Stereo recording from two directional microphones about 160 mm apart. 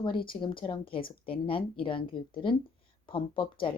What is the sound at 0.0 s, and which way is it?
Speech, 30° left (ahead or behind).